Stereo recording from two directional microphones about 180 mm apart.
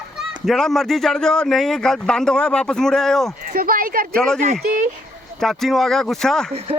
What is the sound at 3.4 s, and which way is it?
Speech, 55° right (ahead or behind).